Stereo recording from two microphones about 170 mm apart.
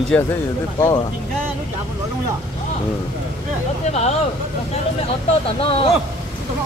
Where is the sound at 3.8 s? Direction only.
40° left (ahead or behind).